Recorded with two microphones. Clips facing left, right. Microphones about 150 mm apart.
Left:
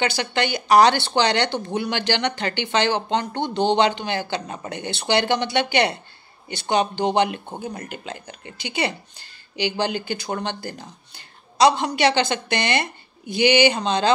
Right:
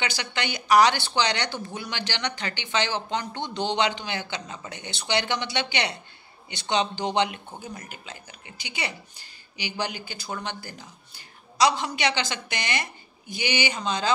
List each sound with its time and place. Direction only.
0.0 s speech: 55° left (ahead or behind)
9.6 s speech: 60° left (ahead or behind)